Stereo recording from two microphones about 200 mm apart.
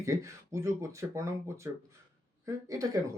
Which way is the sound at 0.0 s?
15° right (ahead or behind).